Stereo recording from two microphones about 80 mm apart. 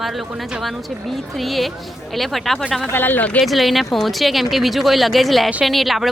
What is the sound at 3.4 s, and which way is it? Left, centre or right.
A woman's voice, centre.